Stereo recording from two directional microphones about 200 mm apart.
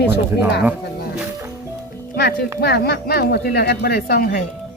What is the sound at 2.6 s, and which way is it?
Speech, 55° left (ahead or behind).